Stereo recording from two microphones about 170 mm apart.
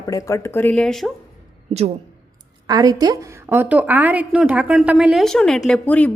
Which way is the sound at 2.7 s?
20° right (ahead or behind).